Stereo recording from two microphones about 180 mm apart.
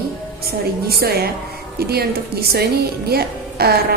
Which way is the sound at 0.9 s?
60° right (ahead or behind).